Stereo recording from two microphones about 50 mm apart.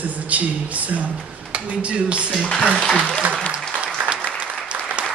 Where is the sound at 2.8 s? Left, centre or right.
Centre.